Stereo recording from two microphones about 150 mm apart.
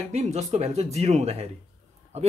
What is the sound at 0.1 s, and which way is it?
Speech, 50° right (ahead or behind).